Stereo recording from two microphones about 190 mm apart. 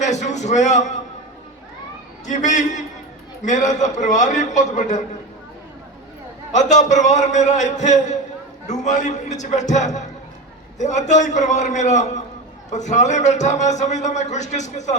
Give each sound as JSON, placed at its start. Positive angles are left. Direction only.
{"t": 0.0, "sound": "a man's voice", "side_deg": 35}
{"t": 2.2, "sound": "a man's voice", "side_deg": 40}
{"t": 6.5, "sound": "a man's voice", "side_deg": 40}